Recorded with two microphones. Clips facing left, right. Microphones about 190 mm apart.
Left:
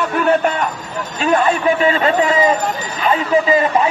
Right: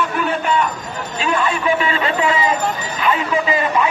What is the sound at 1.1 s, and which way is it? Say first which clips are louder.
A man's voice: left 5 dB; 50° left (ahead or behind).